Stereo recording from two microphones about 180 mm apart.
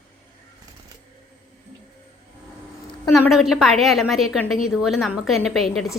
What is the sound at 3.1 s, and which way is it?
A woman's voice, centre (ahead or behind).